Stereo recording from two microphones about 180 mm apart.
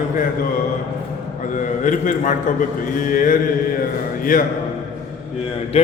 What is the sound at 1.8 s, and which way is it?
A man's voice, 45° left (ahead or behind).